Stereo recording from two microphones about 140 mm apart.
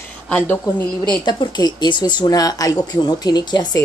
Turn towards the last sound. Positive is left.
turn(degrees=30)  # may be behind; listen again after turning